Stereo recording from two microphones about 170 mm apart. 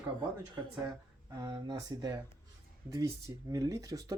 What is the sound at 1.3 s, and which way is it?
Speech, 25° right (ahead or behind).